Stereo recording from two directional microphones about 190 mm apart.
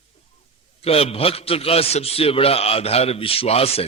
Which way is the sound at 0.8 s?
30° left (ahead or behind).